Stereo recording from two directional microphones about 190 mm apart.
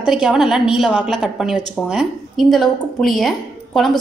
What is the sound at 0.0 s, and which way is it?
A woman's voice, 5° right (ahead or behind).